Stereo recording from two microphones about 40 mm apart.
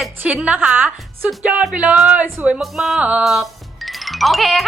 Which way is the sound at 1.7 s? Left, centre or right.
Right.